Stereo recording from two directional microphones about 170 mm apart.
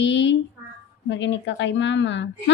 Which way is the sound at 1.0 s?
90° left.